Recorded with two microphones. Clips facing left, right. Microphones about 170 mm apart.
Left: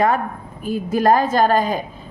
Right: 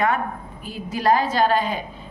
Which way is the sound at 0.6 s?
50° left (ahead or behind).